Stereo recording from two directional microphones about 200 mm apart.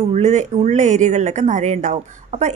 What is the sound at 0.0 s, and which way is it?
A woman's voice, 35° right (ahead or behind).